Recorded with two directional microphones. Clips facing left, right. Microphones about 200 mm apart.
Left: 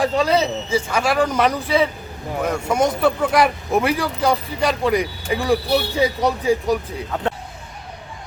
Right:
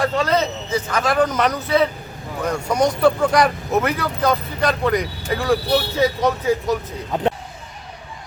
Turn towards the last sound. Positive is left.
turn(degrees=-20)  # may be behind; listen again after turning